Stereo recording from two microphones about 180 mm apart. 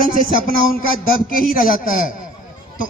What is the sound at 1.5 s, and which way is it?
Speech, 50° left (ahead or behind).